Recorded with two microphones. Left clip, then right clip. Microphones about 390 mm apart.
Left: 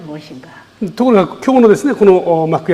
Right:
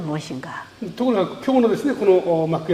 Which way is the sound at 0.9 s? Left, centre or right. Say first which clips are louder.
Left 9 dB; left.